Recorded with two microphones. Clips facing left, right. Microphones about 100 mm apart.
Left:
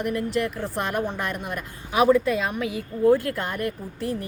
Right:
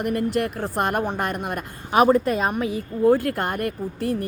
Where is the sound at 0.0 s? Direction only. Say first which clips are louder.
Right 2 dB; 55° right (ahead or behind).